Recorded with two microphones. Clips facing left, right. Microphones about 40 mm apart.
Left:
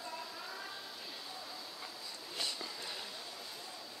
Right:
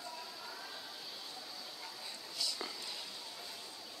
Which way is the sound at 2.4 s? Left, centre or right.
Left.